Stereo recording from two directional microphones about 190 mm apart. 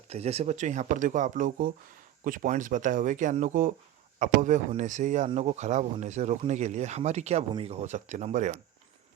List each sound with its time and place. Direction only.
0.1 s speech: 35° right (ahead or behind)